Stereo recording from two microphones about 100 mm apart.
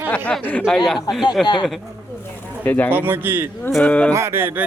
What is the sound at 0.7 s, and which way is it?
Speech, 5° left (ahead or behind).